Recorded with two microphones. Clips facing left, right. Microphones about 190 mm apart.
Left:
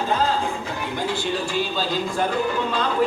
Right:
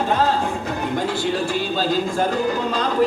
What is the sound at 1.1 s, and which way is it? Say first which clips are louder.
Music: right 3 dB; 50° right (ahead or behind).